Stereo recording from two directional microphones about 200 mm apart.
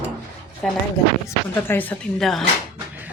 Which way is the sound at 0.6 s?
Centre (ahead or behind).